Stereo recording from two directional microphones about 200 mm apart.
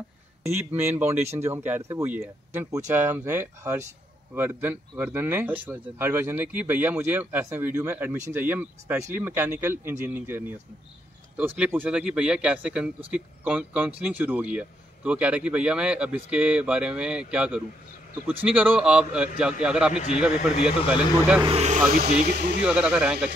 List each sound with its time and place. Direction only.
0.5 s speech: 10° right (ahead or behind)
21.5 s speech: 35° right (ahead or behind)
22.6 s speech: 5° right (ahead or behind)